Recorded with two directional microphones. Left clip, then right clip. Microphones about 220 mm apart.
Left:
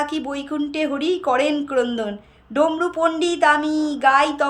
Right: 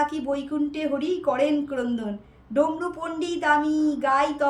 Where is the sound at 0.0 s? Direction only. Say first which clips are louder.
Left 1 dB; 85° left.